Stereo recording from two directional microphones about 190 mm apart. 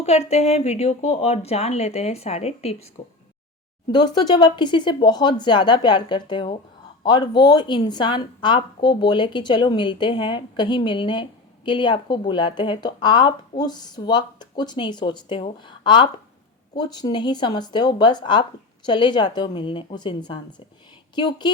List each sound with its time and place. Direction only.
0.0 s a woman's voice: 35° left (ahead or behind)
3.9 s a woman's voice: 20° left (ahead or behind)